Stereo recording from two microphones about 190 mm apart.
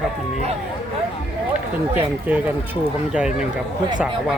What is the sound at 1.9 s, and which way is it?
Speech, 10° right (ahead or behind).